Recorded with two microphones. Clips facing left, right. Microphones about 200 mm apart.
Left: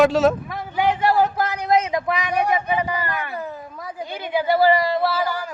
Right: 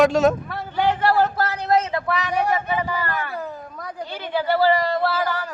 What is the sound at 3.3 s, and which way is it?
Speech, centre (ahead or behind).